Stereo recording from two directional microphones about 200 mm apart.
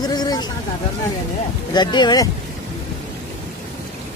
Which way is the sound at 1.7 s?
20° left (ahead or behind).